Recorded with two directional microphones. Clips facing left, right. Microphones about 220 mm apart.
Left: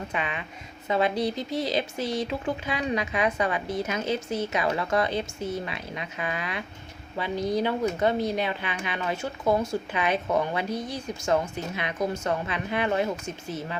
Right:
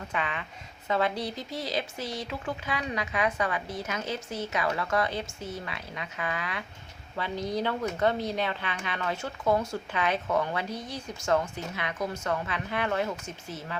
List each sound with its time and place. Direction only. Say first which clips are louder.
0.1 s speech: left 2 dB; 20° left (ahead or behind)